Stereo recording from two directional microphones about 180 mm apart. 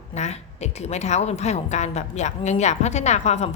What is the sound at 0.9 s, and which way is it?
Speech, 40° left (ahead or behind).